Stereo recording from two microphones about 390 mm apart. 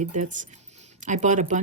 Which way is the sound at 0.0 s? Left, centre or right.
Centre.